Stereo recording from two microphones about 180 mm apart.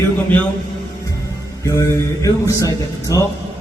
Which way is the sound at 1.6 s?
15° left (ahead or behind).